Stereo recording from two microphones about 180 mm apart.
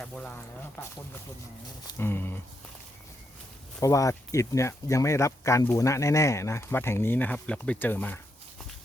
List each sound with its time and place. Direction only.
0.0 s speech: 5° left (ahead or behind)
1.9 s speech: 15° left (ahead or behind)
3.8 s speech: 20° left (ahead or behind)